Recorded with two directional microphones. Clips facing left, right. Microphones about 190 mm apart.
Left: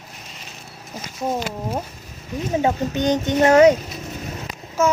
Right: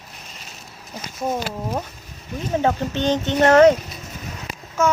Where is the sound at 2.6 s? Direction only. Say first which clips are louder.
Even; 10° left (ahead or behind).